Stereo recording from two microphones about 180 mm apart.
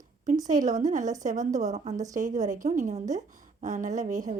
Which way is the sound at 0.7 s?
45° right (ahead or behind).